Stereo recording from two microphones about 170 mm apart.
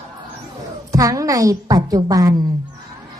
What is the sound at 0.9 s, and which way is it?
A woman's voice, 20° right (ahead or behind).